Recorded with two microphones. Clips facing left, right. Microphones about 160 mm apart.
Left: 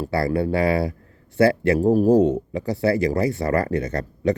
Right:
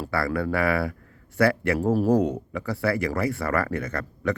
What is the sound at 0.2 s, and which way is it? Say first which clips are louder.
Speech: left 4 dB; 35° left (ahead or behind).